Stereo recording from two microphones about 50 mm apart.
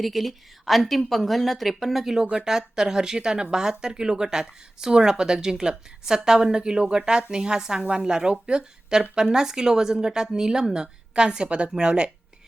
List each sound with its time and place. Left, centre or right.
0.0 s a woman's voice: centre